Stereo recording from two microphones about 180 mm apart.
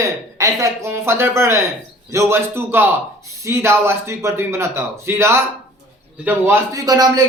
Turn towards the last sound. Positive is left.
turn(degrees=-20)  # may be behind; listen again after turning